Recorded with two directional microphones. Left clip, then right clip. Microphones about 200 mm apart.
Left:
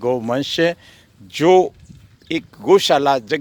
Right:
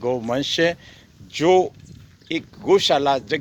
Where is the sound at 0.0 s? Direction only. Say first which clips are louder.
Left 3 dB; 40° left (ahead or behind).